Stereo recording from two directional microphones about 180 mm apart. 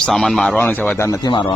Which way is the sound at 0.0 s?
Centre (ahead or behind).